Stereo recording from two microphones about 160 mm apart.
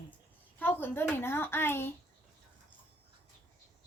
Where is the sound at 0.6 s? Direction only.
10° left (ahead or behind).